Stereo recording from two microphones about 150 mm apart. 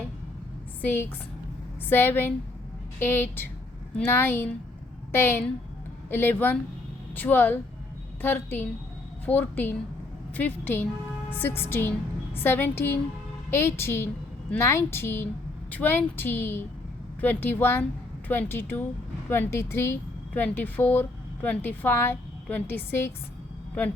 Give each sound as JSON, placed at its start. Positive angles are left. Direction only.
{"t": 0.8, "sound": "a woman's voice", "side_deg": 10}